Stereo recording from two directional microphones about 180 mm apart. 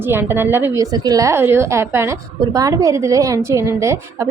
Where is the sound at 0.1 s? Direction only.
10° right (ahead or behind).